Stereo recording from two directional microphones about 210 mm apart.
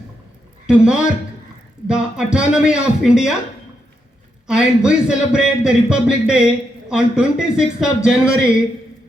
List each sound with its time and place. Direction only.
0.7 s a man's voice: 5° right (ahead or behind)
4.4 s a man's voice: 5° right (ahead or behind)